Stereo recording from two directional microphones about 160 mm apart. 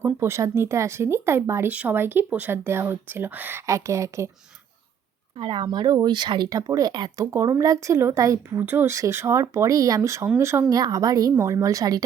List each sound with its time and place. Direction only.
0.0 s speech: 15° right (ahead or behind)
5.4 s speech: 30° right (ahead or behind)